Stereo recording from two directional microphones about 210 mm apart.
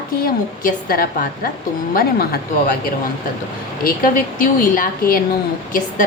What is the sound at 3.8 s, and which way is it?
A woman's voice, 40° left (ahead or behind).